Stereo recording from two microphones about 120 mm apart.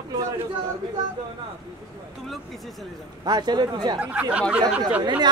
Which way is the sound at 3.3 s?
35° right (ahead or behind).